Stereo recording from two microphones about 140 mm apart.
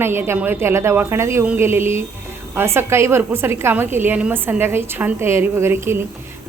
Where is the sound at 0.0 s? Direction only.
15° right (ahead or behind).